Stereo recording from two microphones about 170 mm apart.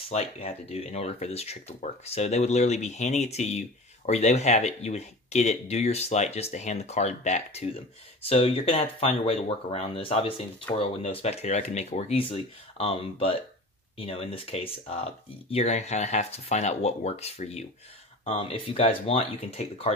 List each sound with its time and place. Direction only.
0.1 s speech: 40° left (ahead or behind)